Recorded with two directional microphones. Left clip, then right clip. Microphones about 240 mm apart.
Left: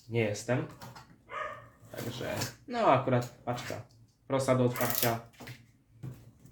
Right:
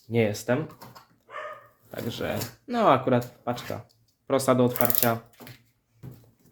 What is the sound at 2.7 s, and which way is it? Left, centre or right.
Speech, right.